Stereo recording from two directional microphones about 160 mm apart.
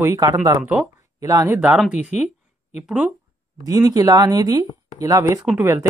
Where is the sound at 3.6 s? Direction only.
25° right (ahead or behind).